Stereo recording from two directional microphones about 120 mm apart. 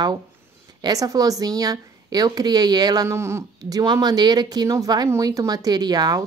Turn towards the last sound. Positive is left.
turn(degrees=-35)  # may be behind; listen again after turning